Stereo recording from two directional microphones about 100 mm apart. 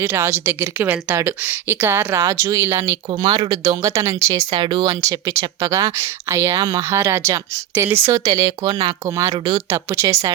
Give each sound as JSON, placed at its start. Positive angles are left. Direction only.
{"t": 0.0, "sound": "a woman's voice", "side_deg": -25}
{"t": 4.6, "sound": "speech", "side_deg": -55}
{"t": 4.9, "sound": "a woman's voice", "side_deg": -30}
{"t": 8.1, "sound": "speech", "side_deg": -35}